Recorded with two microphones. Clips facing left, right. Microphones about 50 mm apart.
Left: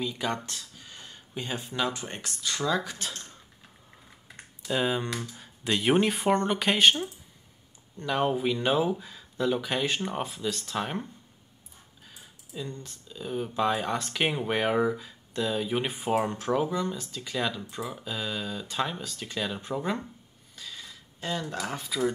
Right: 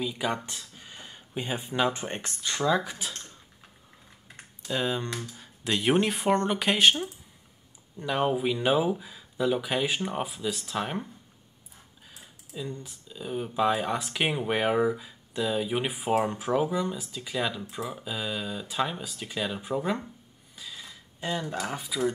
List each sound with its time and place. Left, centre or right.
0.0 s speech: centre
3.0 s speech: centre
4.6 s speech: centre
12.1 s speech: centre
20.5 s a sound: centre